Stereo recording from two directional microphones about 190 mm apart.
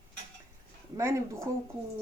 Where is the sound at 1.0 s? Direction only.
15° right (ahead or behind).